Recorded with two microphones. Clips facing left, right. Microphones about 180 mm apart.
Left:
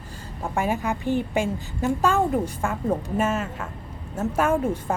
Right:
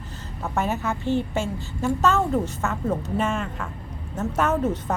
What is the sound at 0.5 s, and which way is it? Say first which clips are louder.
Speech: left 1 dB; 10° left (ahead or behind).